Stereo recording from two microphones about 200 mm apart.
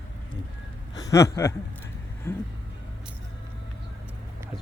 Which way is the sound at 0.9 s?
15° left (ahead or behind).